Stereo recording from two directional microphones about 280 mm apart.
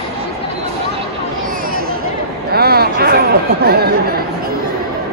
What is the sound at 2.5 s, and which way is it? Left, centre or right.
Chatter, right.